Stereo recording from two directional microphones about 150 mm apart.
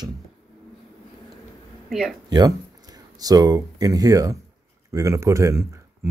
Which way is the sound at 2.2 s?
25° right (ahead or behind).